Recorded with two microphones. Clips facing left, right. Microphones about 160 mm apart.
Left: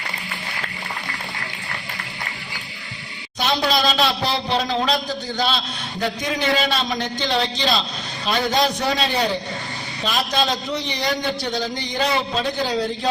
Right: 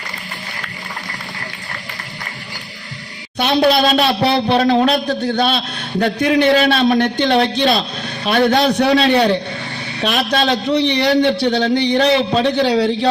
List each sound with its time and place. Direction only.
3.3 s a man's voice: 60° right (ahead or behind)